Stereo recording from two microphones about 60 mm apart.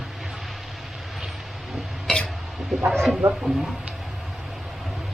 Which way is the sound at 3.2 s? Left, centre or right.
Right.